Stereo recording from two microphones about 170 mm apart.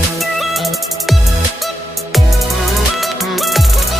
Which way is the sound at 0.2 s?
Centre (ahead or behind).